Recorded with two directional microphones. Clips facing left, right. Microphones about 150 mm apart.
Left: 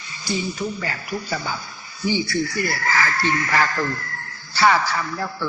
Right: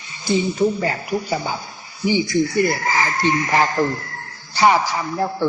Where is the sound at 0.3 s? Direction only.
20° right (ahead or behind).